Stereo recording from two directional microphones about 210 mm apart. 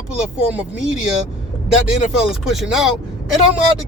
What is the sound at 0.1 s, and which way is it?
Speech, 5° right (ahead or behind).